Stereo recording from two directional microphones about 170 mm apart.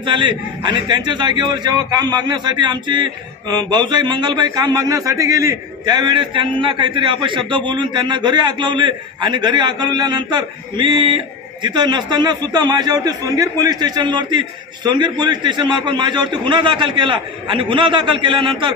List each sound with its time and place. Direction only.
0.0 s a man's voice: 30° right (ahead or behind)